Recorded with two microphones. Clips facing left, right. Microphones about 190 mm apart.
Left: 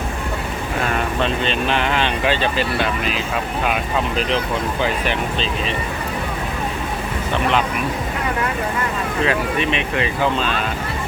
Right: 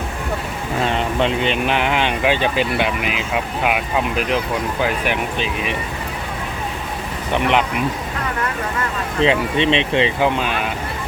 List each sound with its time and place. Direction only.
0.9 s speech: 20° right (ahead or behind)
7.3 s speech: 20° right (ahead or behind)
9.2 s speech: 25° right (ahead or behind)